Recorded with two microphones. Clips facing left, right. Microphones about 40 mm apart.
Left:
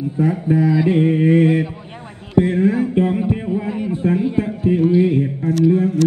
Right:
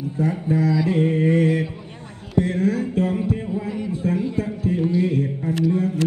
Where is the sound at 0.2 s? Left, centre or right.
Left.